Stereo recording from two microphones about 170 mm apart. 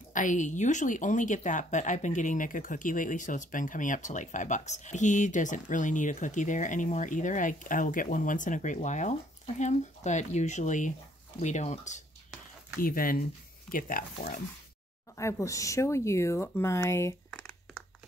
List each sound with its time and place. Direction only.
0.1 s speech: 50° left (ahead or behind)
12.7 s speech: 60° left (ahead or behind); by 14.4 s 45° left (ahead or behind)
15.1 s speech: 20° left (ahead or behind)
17.3 s crumpling: 5° left (ahead or behind)